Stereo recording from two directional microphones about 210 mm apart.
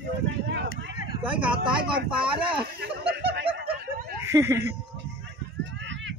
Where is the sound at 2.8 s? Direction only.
50° right (ahead or behind).